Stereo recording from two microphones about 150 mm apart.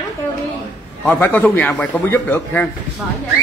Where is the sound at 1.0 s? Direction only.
10° left (ahead or behind).